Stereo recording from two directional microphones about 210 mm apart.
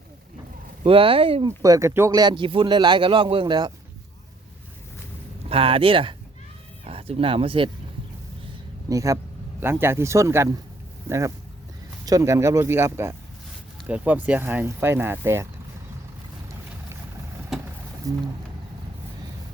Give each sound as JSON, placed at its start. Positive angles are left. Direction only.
{"t": 0.9, "sound": "speech", "side_deg": -25}
{"t": 5.5, "sound": "speech", "side_deg": -25}
{"t": 8.9, "sound": "speech", "side_deg": -15}
{"t": 12.0, "sound": "speech", "side_deg": -15}
{"t": 18.0, "sound": "speech", "side_deg": -15}